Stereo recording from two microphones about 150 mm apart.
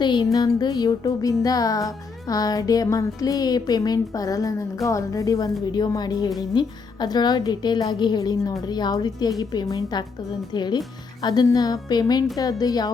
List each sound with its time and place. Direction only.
0.0 s music: 30° left (ahead or behind)